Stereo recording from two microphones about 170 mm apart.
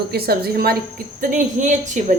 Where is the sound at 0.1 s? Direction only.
65° right (ahead or behind).